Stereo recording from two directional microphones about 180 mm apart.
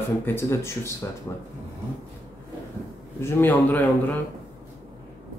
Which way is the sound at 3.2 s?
10° left (ahead or behind).